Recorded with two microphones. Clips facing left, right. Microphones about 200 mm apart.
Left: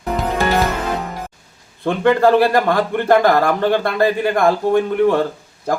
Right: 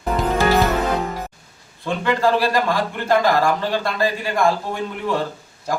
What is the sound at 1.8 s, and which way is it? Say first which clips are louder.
Speech: left 6 dB; 55° left (ahead or behind).